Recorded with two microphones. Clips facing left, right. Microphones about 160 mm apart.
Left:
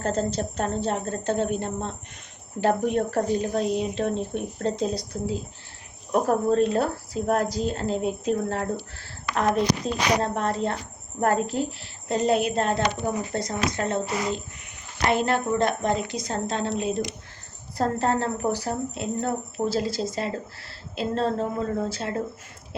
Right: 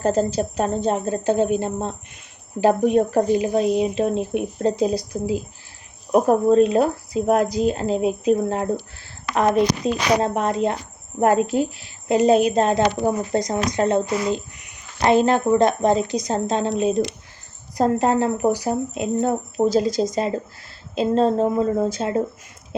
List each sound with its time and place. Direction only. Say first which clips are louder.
0.0 s speech: right 6 dB; 10° right (ahead or behind)